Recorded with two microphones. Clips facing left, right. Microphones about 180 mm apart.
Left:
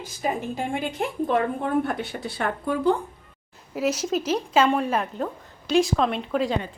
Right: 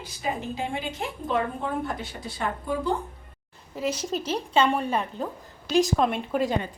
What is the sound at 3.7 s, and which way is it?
A woman's voice, 5° left (ahead or behind).